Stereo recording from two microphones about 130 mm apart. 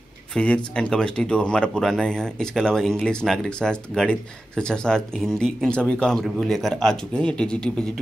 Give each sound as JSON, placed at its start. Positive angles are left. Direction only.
{"t": 0.3, "sound": "speech", "side_deg": 10}